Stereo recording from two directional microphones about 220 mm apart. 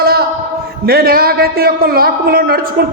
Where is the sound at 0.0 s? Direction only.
45° right (ahead or behind).